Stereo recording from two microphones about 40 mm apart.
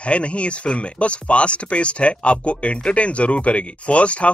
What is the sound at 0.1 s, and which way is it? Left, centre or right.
Speech, left.